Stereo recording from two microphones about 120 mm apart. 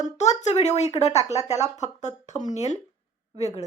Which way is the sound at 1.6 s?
75° left (ahead or behind).